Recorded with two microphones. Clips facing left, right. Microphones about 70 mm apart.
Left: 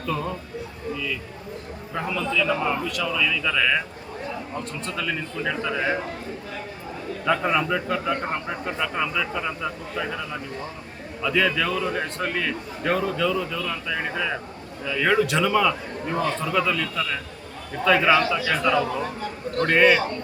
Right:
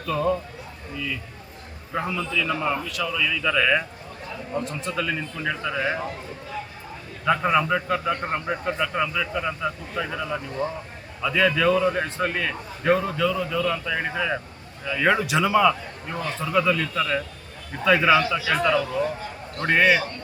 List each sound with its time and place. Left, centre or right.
0.0 s a man's voice: centre
7.3 s a man's voice: centre